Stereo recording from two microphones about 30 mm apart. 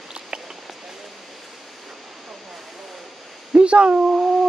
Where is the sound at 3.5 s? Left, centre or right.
Right.